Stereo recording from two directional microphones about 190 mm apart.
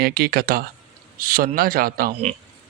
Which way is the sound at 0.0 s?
50° right (ahead or behind).